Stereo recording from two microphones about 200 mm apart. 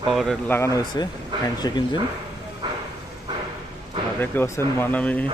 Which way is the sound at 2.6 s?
20° right (ahead or behind).